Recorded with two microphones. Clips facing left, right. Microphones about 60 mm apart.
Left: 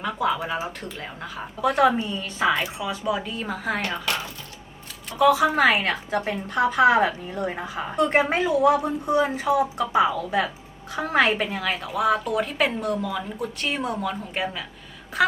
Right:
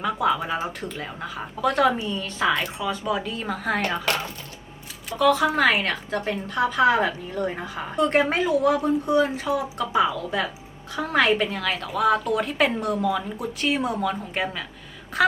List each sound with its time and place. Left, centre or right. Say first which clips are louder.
0.0 s speech: right 2 dB; centre
5.1 s a woman's voice: left 1 dB; centre
8.4 s a woman's voice: left 2 dB; centre
8.7 s a woman's voice: right 1 dB; centre